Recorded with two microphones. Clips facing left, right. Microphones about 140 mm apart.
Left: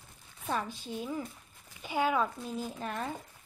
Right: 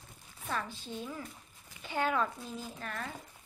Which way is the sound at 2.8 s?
20° left (ahead or behind).